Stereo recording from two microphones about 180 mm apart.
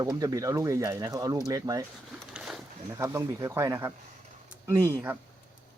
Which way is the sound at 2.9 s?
15° right (ahead or behind).